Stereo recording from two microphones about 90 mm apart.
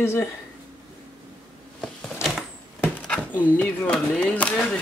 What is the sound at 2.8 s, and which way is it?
Speech, 20° left (ahead or behind).